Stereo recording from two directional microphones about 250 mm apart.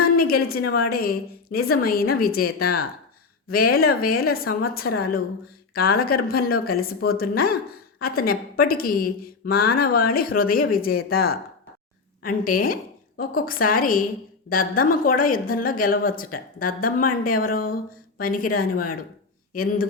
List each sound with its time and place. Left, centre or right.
0.0 s a woman's voice: left